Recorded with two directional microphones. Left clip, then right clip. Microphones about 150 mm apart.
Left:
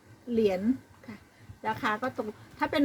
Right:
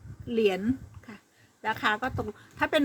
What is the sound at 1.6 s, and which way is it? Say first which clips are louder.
A woman's voice: right 2 dB; 35° right (ahead or behind).